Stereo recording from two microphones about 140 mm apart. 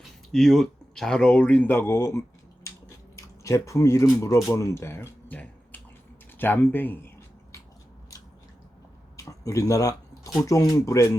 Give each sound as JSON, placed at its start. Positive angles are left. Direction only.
{"t": 0.3, "sound": "speech", "side_deg": 5}
{"t": 9.1, "sound": "speech", "side_deg": 20}